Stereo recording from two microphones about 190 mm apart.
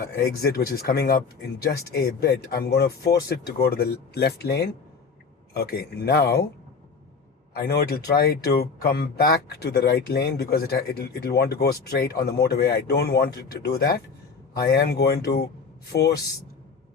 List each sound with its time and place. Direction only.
0.4 s speech: 55° left (ahead or behind)
7.5 s speech: 55° left (ahead or behind)